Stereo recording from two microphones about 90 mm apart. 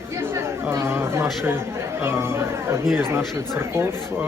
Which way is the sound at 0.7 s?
25° right (ahead or behind).